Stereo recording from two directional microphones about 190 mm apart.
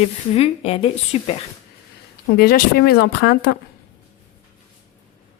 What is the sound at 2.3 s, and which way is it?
Speech, 55° left (ahead or behind).